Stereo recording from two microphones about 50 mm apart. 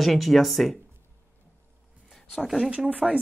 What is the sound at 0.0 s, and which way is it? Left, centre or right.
Speech, centre.